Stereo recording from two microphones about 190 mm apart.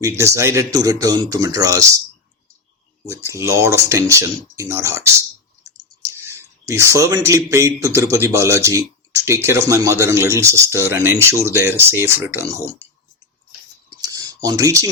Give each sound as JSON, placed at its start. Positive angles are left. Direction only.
{"t": 0.0, "sound": "a man's voice", "side_deg": -15}
{"t": 3.1, "sound": "a man's voice", "side_deg": -15}
{"t": 13.9, "sound": "a sound", "side_deg": -20}